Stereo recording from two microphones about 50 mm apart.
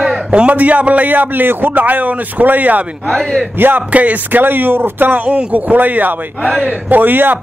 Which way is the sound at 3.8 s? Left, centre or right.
Right.